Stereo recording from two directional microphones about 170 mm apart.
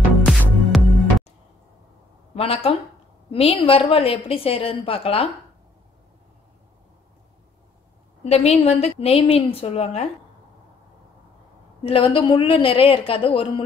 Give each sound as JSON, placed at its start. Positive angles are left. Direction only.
{"t": 0.2, "sound": "music", "side_deg": 0}
{"t": 2.3, "sound": "a woman's voice", "side_deg": 35}
{"t": 8.2, "sound": "a woman's voice", "side_deg": 40}
{"t": 11.8, "sound": "a woman's voice", "side_deg": 30}